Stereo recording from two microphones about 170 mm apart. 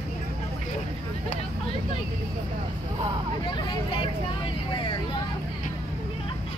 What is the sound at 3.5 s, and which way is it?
Vehicle, 30° left (ahead or behind).